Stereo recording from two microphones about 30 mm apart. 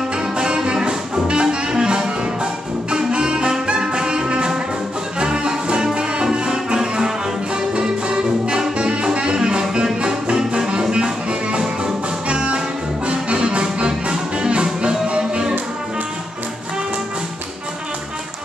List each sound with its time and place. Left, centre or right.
0.7 s music: right
10.0 s brass instrument: right
10.8 s music: right